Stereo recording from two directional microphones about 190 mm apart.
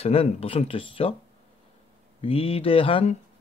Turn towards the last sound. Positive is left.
turn(degrees=30)  # may be behind; listen again after turning